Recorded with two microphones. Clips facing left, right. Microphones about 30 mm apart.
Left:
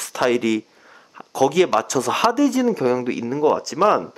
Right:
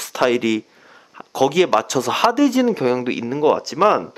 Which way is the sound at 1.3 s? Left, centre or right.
Right.